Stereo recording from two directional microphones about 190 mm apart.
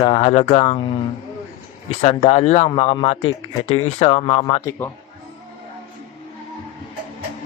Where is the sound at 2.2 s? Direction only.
35° left (ahead or behind).